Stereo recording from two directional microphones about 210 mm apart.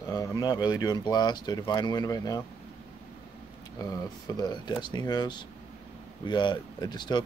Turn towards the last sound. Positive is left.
turn(degrees=20)  # may be behind; listen again after turning